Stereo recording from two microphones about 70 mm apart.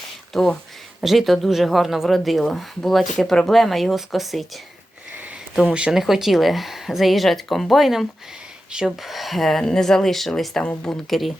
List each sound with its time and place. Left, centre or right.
0.3 s speech: centre
5.1 s a sound: right
5.6 s speech: centre
10.6 s speech: centre
11.1 s speech: centre